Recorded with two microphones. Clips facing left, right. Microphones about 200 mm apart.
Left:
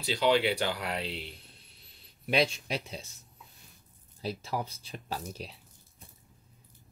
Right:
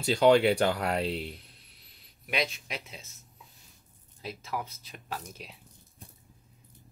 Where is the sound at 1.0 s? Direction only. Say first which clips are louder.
Right 6 dB; centre (ahead or behind).